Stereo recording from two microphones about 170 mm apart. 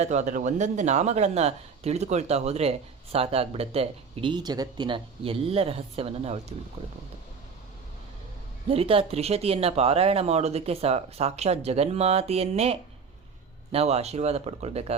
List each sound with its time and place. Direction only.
0.0 s speech: 45° right (ahead or behind)
8.7 s speech: 35° right (ahead or behind)